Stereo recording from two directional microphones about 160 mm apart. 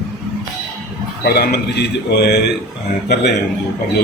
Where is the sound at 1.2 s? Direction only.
85° left.